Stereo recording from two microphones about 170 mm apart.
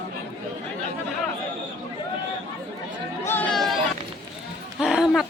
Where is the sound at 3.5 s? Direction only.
Centre (ahead or behind).